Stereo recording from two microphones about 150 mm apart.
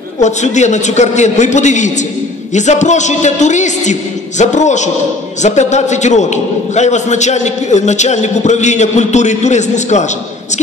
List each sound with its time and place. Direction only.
0.2 s a man's voice: 50° left (ahead or behind)